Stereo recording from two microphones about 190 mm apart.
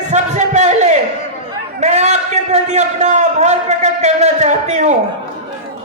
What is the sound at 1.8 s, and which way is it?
A man's voice, 35° right (ahead or behind).